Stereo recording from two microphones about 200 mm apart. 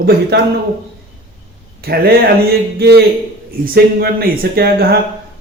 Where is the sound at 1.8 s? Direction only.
50° right (ahead or behind).